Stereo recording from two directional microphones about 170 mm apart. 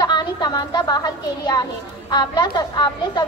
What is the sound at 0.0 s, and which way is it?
A child's voice, 25° left (ahead or behind).